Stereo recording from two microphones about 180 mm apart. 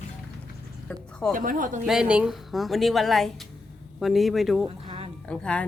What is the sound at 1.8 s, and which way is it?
Speech, 5° right (ahead or behind).